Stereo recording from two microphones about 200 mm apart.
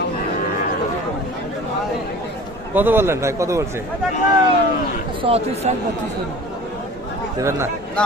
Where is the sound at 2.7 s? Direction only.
10° right (ahead or behind).